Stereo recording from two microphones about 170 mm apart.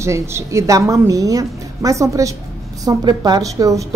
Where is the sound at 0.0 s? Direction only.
15° right (ahead or behind).